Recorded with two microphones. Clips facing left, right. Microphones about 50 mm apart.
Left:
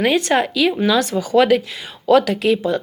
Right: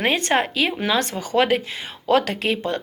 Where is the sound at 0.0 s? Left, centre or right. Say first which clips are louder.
Left 4 dB; right.